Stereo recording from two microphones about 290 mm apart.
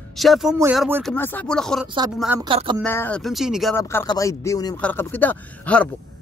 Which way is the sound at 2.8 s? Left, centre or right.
Centre.